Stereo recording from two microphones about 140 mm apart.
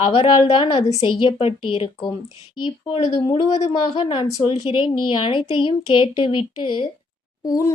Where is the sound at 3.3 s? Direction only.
50° left (ahead or behind).